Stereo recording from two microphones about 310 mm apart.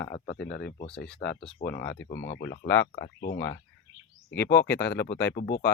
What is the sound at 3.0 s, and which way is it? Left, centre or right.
Speech, left.